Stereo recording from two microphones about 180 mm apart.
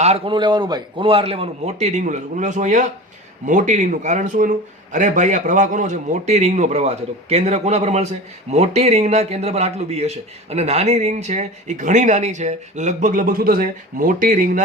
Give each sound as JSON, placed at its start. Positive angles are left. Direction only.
{"t": 0.0, "sound": "a man's voice", "side_deg": -30}